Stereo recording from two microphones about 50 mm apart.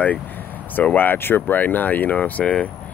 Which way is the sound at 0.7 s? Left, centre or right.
Left.